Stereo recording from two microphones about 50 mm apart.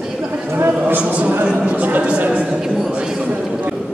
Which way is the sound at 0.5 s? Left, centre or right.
Right.